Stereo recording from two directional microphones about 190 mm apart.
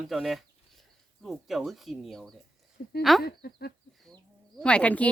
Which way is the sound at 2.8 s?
55° left (ahead or behind).